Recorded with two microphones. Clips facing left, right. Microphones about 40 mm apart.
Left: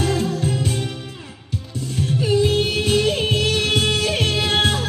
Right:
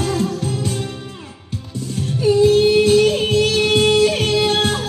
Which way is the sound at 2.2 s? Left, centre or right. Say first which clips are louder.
Right 7 dB; left.